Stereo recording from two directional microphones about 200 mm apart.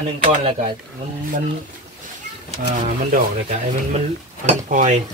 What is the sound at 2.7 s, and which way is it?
Speech, 40° right (ahead or behind).